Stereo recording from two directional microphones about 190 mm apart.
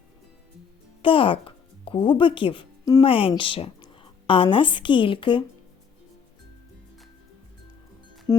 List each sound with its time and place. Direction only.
1.0 s a woman's voice: 25° left (ahead or behind)
8.3 s music: 15° left (ahead or behind)